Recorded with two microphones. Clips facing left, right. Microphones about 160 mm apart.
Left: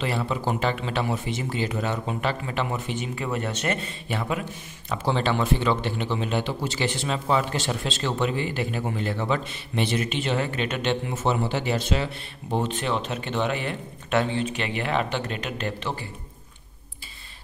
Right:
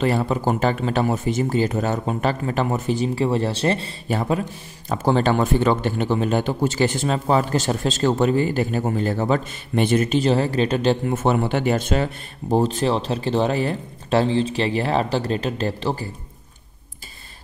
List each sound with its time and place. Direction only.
0.0 s speech: 45° right (ahead or behind)
11.1 s speech: 55° right (ahead or behind); by 16.1 s 35° right (ahead or behind)